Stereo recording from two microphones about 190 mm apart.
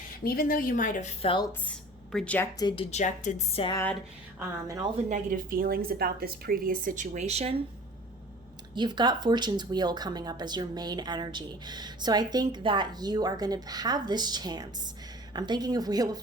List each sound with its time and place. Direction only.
0.3 s a woman's voice: 50° left (ahead or behind); by 1.5 s 30° left (ahead or behind)
2.1 s speech: 5° left (ahead or behind)
2.6 s speech: 25° left (ahead or behind)
4.4 s a woman's voice: 15° right (ahead or behind)
5.0 s a woman's voice: 45° right (ahead or behind)
8.7 s speech: 25° right (ahead or behind)